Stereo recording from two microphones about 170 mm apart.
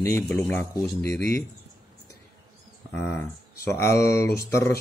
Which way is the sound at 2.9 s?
10° left (ahead or behind).